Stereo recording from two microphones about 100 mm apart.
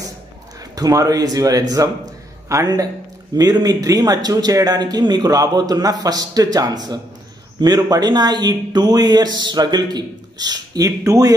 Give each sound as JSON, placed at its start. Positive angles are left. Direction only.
{"t": 0.7, "sound": "speech", "side_deg": -35}